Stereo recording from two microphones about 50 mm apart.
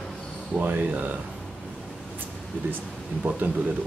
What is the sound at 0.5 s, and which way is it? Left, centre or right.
Speech, right.